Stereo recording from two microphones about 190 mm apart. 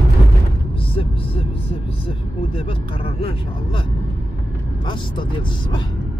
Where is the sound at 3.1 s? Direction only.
30° left (ahead or behind).